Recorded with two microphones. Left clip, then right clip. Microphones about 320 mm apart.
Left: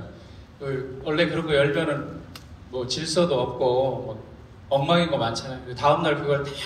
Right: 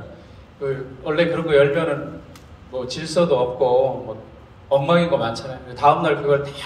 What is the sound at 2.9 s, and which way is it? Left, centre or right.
Speech, centre.